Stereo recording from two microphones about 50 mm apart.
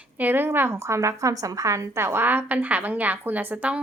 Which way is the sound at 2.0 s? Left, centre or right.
Right.